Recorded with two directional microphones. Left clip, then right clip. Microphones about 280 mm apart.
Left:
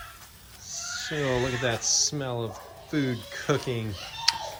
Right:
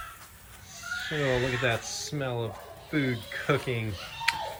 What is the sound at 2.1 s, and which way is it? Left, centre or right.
Speech, centre.